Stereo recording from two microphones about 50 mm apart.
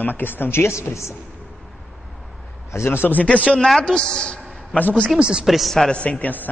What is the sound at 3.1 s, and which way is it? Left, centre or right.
Speech, left.